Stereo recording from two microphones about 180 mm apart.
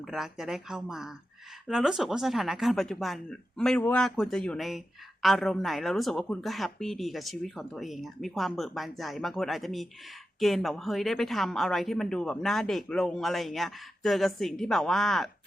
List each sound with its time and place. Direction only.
0.0 s a woman's voice: centre (ahead or behind)